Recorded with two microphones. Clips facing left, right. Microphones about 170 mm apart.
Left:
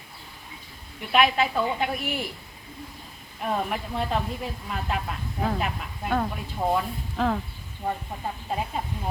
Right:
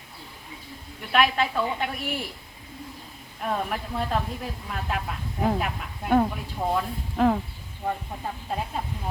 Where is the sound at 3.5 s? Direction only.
5° left (ahead or behind).